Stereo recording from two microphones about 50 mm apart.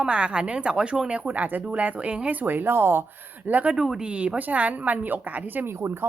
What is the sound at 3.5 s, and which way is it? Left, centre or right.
Speech, right.